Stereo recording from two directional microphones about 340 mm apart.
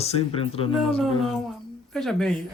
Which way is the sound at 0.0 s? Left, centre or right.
Centre.